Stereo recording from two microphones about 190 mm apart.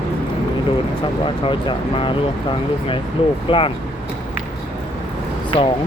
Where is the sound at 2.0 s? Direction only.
25° left (ahead or behind).